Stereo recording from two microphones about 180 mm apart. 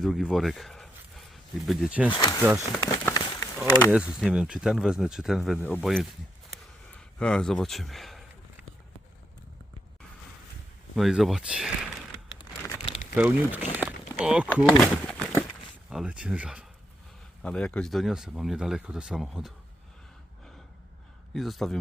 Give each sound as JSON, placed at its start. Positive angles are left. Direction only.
{"t": 0.0, "sound": "speech", "side_deg": 0}
{"t": 2.1, "sound": "speech", "side_deg": 25}
{"t": 2.6, "sound": "speech", "side_deg": 15}
{"t": 3.2, "sound": "a sound", "side_deg": 25}
{"t": 3.8, "sound": "speech", "side_deg": -5}
{"t": 7.2, "sound": "speech", "side_deg": 5}
{"t": 10.9, "sound": "speech", "side_deg": 0}
{"t": 12.4, "sound": "a sound", "side_deg": 20}
{"t": 13.1, "sound": "speech", "side_deg": -10}
{"t": 17.4, "sound": "speech", "side_deg": 5}
{"t": 21.3, "sound": "speech", "side_deg": 0}